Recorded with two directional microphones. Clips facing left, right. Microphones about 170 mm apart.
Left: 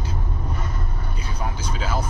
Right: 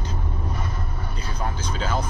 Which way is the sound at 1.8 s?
10° left (ahead or behind).